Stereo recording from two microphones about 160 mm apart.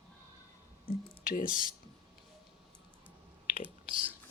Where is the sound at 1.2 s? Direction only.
60° left (ahead or behind).